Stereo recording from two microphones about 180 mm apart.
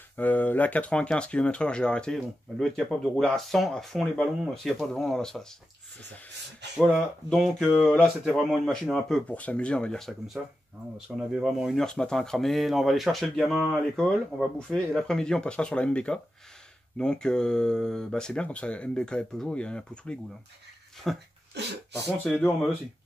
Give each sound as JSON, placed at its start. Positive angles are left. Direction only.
{"t": 0.2, "sound": "speech", "side_deg": 10}
{"t": 6.8, "sound": "speech", "side_deg": -5}
{"t": 21.5, "sound": "throat clearing", "side_deg": -70}
{"t": 21.9, "sound": "speech", "side_deg": 15}
{"t": 22.3, "sound": "speech", "side_deg": 5}